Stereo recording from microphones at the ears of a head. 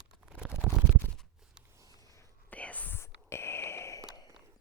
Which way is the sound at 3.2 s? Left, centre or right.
Left.